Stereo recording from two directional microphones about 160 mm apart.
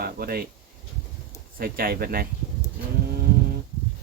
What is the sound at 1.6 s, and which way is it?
Speech, 65° right (ahead or behind).